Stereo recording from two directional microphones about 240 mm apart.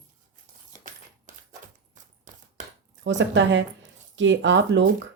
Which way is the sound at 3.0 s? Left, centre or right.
Right.